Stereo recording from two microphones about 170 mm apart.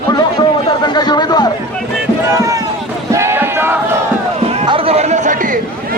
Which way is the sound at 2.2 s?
15° right (ahead or behind).